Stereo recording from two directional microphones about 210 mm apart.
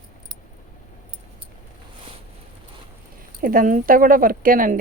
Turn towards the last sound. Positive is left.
turn(degrees=-40)  # may be behind; listen again after turning